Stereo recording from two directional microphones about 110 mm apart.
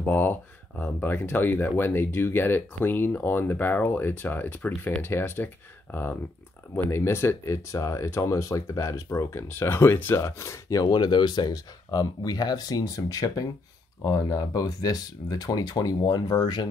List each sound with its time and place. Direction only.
0.0 s speech: 15° left (ahead or behind); by 16.6 s 40° left (ahead or behind)